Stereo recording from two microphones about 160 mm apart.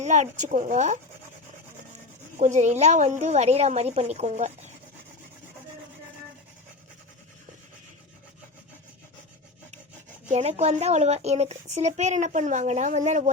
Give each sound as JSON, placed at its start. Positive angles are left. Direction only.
{"t": 0.0, "sound": "speech", "side_deg": -45}
{"t": 2.4, "sound": "speech", "side_deg": -45}
{"t": 10.3, "sound": "speech", "side_deg": -45}